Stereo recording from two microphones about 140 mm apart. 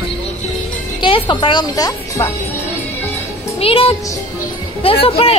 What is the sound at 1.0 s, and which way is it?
Speech, 35° left (ahead or behind).